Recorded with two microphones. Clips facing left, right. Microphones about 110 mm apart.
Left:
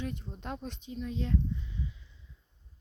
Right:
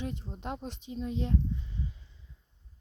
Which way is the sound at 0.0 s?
25° right (ahead or behind).